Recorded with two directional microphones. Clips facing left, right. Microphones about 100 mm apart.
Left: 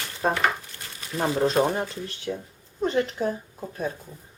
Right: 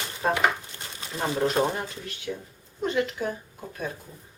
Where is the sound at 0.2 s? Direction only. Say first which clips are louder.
Left 1 dB; 30° left (ahead or behind).